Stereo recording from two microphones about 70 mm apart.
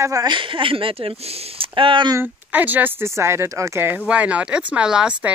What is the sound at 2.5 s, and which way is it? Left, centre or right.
Speech, right.